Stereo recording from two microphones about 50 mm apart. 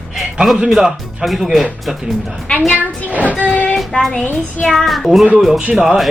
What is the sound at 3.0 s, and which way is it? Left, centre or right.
Speech, right.